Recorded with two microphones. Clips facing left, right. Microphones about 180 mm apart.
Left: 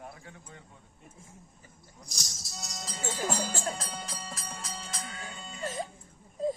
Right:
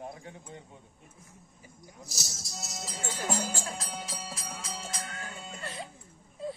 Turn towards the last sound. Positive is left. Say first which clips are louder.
# left 6 dB
turn(degrees=40)  # may be behind; listen again after turning